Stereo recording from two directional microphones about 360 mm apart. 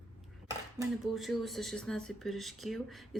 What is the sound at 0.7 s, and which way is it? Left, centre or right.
Speech, centre.